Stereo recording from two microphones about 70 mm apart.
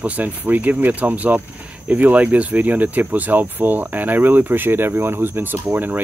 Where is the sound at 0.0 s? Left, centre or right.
Right.